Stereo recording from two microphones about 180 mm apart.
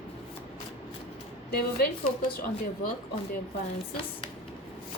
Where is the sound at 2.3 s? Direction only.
55° left (ahead or behind).